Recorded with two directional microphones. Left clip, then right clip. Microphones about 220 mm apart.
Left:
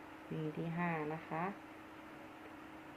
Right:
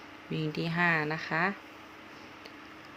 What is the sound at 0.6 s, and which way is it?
Speech, 50° right (ahead or behind).